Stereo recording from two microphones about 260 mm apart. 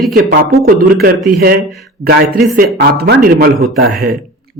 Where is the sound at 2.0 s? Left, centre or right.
Right.